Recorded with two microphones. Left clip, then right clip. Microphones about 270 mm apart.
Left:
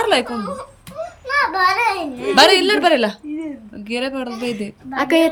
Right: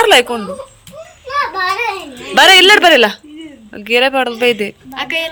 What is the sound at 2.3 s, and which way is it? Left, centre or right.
Speech, centre.